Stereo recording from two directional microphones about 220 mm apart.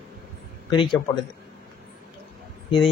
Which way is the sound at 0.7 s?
20° left (ahead or behind).